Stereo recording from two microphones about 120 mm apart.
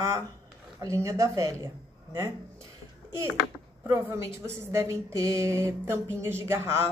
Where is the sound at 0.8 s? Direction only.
30° right (ahead or behind).